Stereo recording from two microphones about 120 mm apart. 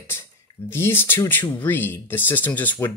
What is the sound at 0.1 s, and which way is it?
Speech, 20° left (ahead or behind).